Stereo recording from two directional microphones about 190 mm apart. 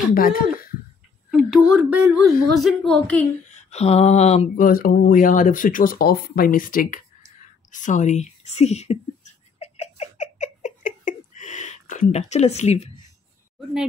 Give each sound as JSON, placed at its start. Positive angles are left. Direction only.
{"t": 0.1, "sound": "speech", "side_deg": 50}
{"t": 1.3, "sound": "speech", "side_deg": -5}
{"t": 3.5, "sound": "speech", "side_deg": 35}
{"t": 4.6, "sound": "a woman's voice", "side_deg": 50}
{"t": 9.6, "sound": "a sound", "side_deg": 35}